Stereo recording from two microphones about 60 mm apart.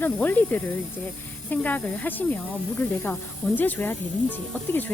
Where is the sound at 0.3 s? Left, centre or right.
Left.